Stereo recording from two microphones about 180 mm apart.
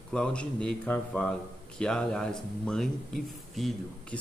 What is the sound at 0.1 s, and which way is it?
A man's voice, 5° left (ahead or behind).